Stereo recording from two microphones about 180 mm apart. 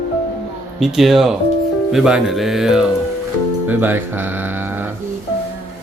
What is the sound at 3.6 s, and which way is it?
Speech, 10° right (ahead or behind).